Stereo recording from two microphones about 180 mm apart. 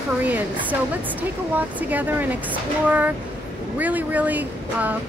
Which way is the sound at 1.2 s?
10° right (ahead or behind).